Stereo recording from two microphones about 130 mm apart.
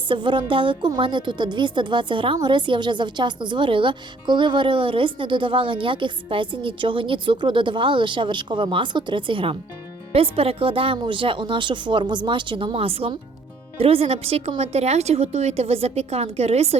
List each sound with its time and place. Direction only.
0.1 s a woman's voice: 40° right (ahead or behind)